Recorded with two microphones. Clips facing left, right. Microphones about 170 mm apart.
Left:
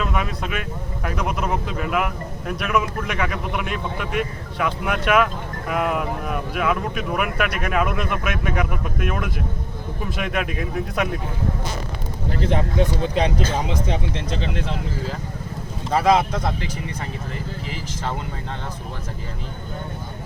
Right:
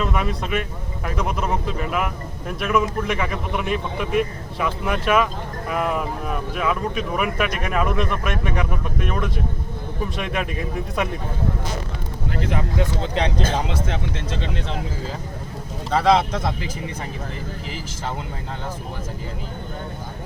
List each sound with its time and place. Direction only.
0.0 s speech: centre (ahead or behind)
12.4 s speech: 35° left (ahead or behind)
12.8 s speech: 10° left (ahead or behind)
15.9 s speech: 5° left (ahead or behind)